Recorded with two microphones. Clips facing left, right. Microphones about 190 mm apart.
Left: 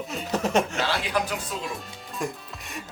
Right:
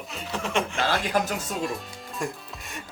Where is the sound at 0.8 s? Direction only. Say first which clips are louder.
Right 2 dB; 45° right (ahead or behind).